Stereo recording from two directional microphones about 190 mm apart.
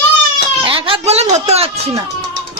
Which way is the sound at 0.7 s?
25° right (ahead or behind).